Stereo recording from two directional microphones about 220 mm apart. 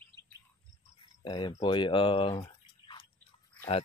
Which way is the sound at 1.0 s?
20° left (ahead or behind).